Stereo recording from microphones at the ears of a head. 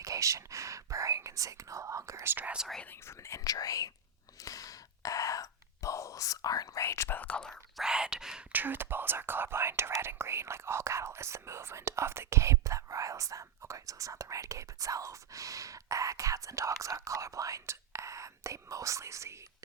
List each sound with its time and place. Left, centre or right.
0.0 s speech: right
2.9 s speech: left
4.4 s whispering: left
7.8 s speech: centre
8.6 s speech: right